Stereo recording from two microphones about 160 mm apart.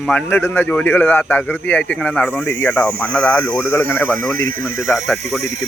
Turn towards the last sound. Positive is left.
turn(degrees=0)  # may be behind; listen again after turning